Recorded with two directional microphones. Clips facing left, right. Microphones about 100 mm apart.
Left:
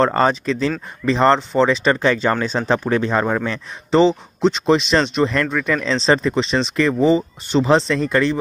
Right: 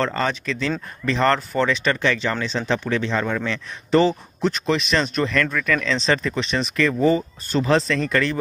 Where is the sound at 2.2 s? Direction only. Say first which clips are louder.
Left 5 dB; 45° left (ahead or behind).